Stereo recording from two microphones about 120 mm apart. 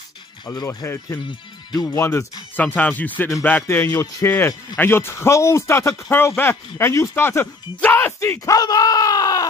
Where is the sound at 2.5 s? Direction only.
15° left (ahead or behind).